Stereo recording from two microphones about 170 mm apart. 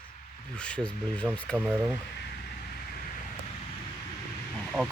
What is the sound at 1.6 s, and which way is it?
Speech, 10° right (ahead or behind).